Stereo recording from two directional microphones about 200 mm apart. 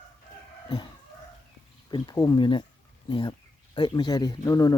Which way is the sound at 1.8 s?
20° left (ahead or behind).